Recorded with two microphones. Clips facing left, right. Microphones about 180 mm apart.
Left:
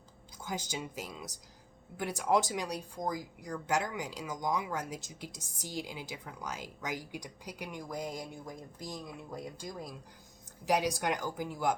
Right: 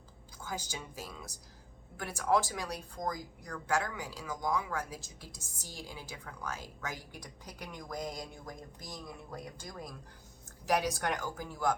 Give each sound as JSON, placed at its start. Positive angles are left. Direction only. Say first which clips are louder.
{"t": 0.4, "sound": "speech", "louder": "left 3 dB", "side_deg": 15}